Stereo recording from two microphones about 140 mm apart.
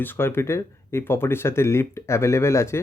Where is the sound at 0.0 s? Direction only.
15° left (ahead or behind).